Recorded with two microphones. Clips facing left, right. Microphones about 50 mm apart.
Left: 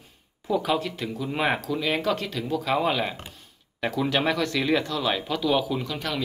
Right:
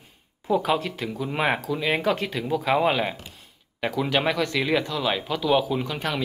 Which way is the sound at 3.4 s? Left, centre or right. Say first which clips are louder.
Right 1 dB; centre.